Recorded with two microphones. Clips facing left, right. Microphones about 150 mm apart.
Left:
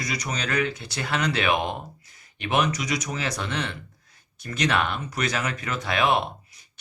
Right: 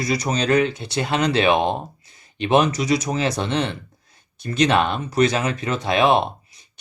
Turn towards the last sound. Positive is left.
turn(degrees=-25)  # may be behind; listen again after turning